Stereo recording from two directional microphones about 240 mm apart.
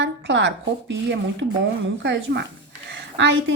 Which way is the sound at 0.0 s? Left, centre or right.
Right.